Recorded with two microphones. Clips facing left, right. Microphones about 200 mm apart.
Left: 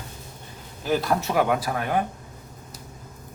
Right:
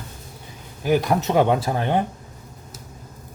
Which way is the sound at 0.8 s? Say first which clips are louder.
Right 4 dB; 15° right (ahead or behind).